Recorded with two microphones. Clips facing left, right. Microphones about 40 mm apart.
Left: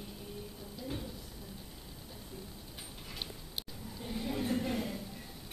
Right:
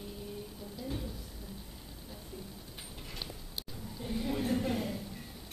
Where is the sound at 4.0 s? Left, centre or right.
Centre.